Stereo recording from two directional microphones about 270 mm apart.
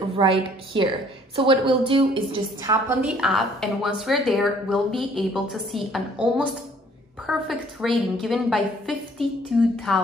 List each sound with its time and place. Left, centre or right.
0.2 s a woman's voice: centre